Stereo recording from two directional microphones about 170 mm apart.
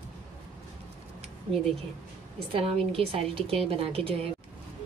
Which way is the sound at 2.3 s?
35° right (ahead or behind).